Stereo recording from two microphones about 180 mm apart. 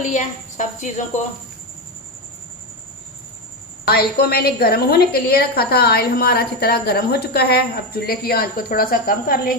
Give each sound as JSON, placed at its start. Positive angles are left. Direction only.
{"t": 0.0, "sound": "speech", "side_deg": 45}
{"t": 3.8, "sound": "a woman's voice", "side_deg": 60}